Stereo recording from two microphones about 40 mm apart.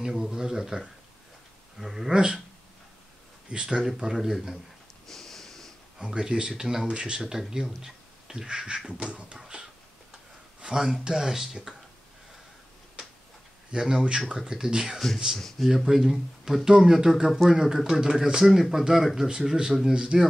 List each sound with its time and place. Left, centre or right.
0.0 s speech: centre
2.1 s speech: right
3.4 s speech: right
4.0 s speech: centre
5.0 s snort: centre
5.9 s speech: centre
7.2 s speech: centre; by 9.4 s right
10.6 s speech: centre
13.7 s speech: centre
15.3 s speech: centre
15.8 s speech: centre
19.9 s speech: right